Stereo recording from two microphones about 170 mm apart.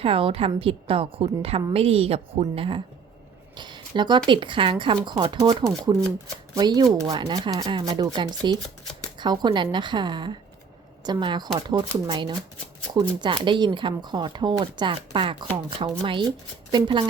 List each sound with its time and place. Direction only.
0.0 s a woman's voice: 30° right (ahead or behind)
3.5 s a sound: 25° right (ahead or behind)
4.3 s speech: 30° right (ahead or behind)